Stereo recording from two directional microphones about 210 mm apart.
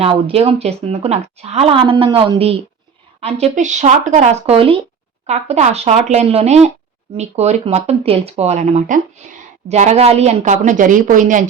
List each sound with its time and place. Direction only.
0.0 s speech: 25° right (ahead or behind)